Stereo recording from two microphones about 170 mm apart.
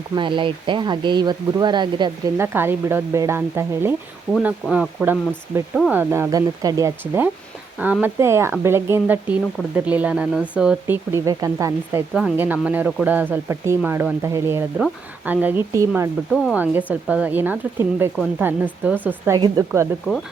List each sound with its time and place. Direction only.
0.2 s speech: 30° right (ahead or behind)
2.4 s speech: 15° right (ahead or behind)
4.4 s speech: 5° right (ahead or behind)
12.1 s speech: 5° right (ahead or behind)